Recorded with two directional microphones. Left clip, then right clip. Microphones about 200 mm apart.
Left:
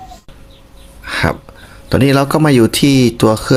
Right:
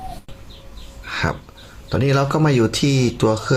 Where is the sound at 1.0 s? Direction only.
35° left (ahead or behind).